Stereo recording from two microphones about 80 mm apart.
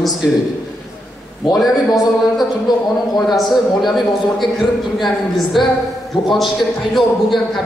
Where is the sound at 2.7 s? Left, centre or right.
Left.